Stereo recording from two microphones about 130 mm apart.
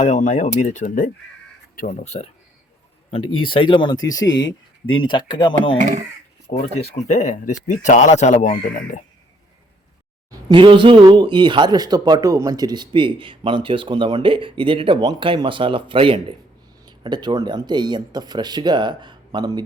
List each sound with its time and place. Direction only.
0.0 s speech: 70° left (ahead or behind); by 2.0 s 90° left
2.0 s speech: 55° left (ahead or behind)
3.1 s speech: 45° left (ahead or behind)
5.8 s speech: 75° right (ahead or behind)
6.5 s speech: 55° left (ahead or behind); by 9.0 s 85° left
10.5 s a man's voice: 40° right (ahead or behind)